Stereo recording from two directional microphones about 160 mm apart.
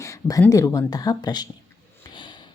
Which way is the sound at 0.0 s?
20° left (ahead or behind).